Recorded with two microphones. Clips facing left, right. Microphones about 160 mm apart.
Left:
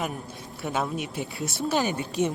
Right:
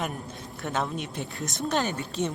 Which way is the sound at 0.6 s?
5° left (ahead or behind).